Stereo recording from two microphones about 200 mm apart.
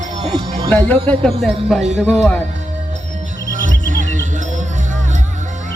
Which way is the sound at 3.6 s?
40° right (ahead or behind).